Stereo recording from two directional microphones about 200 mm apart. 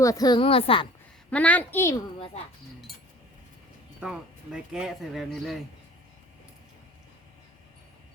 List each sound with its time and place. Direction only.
0.0 s a woman's voice: 15° left (ahead or behind)
1.3 s a woman's voice: 5° left (ahead or behind)
4.0 s speech: 5° right (ahead or behind)